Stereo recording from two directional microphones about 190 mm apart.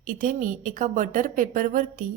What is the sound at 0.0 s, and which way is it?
A woman's voice, 45° right (ahead or behind).